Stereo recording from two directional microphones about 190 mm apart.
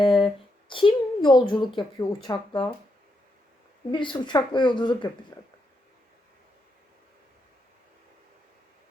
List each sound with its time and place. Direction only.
0.0 s a sound: 25° left (ahead or behind)
0.7 s a woman's voice: 25° left (ahead or behind)
3.9 s a woman's voice: 25° left (ahead or behind)